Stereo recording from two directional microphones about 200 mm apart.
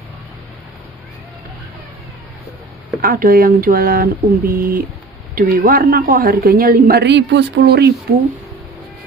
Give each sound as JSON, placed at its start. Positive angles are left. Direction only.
{"t": 3.0, "sound": "a woman's voice", "side_deg": -45}